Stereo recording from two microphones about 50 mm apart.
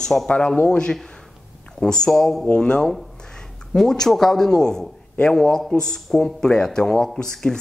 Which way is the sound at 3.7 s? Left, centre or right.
Centre.